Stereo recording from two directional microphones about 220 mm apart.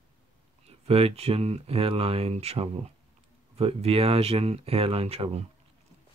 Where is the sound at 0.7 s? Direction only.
25° right (ahead or behind).